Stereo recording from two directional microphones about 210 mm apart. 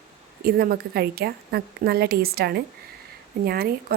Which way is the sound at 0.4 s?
45° right (ahead or behind).